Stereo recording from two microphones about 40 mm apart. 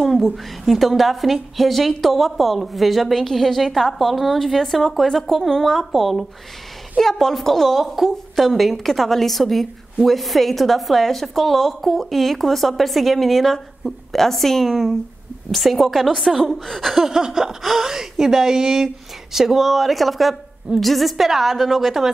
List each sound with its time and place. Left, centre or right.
0.0 s a woman's voice: centre
7.7 s a woman's voice: centre
16.9 s a woman's voice: centre